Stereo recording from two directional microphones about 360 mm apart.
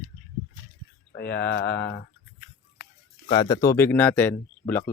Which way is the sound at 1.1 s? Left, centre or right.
Left.